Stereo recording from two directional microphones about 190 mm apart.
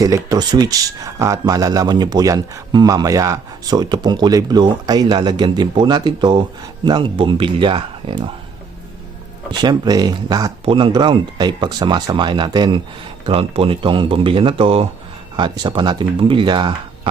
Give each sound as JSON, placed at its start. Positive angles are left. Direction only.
{"t": 0.0, "sound": "speech", "side_deg": -20}
{"t": 9.5, "sound": "speech", "side_deg": -20}